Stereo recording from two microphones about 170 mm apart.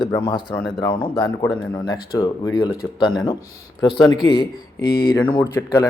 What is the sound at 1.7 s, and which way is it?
A man's voice, 25° left (ahead or behind).